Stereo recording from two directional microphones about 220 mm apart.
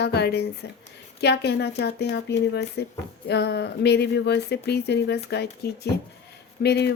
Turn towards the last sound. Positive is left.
turn(degrees=50)  # may be behind; listen again after turning